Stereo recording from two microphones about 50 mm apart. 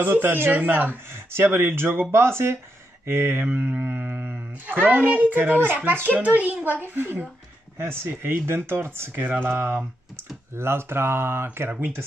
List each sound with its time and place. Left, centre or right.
0.0 s a child's voice: right
2.0 s speech: right
3.4 s a child's voice: right
7.8 s speech: right
10.5 s speech: right